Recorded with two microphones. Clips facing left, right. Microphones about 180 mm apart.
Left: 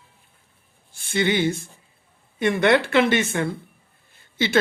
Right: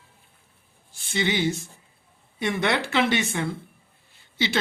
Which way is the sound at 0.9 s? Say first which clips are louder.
Left 4 dB; 55° left (ahead or behind).